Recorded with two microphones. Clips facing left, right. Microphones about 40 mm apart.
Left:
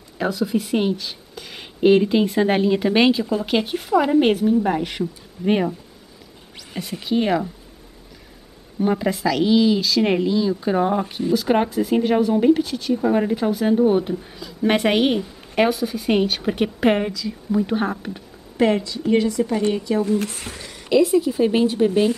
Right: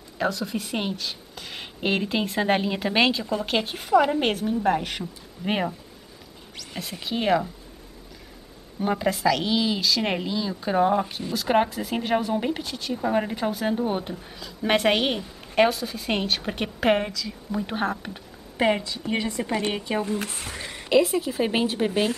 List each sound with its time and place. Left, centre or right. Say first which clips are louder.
0.2 s speech: left 5 dB; centre
8.7 s speech: left 4 dB; centre
19.2 s a woman's voice: left 8 dB; right
19.5 s a woman's voice: left 5 dB; right
20.5 s a sound: right 1 dB; right
20.9 s speech: left 4 dB; centre